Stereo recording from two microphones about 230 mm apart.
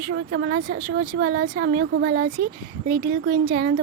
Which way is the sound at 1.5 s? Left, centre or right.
Right.